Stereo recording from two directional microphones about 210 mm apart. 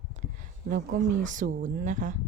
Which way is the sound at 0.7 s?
40° right (ahead or behind).